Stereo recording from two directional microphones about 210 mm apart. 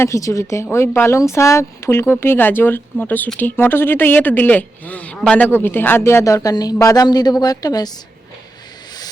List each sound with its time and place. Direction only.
0.0 s speech: 15° left (ahead or behind)